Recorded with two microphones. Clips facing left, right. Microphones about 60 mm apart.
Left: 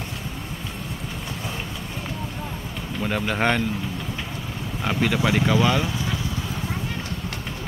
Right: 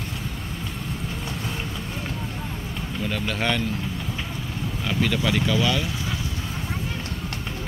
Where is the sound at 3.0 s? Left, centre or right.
Left.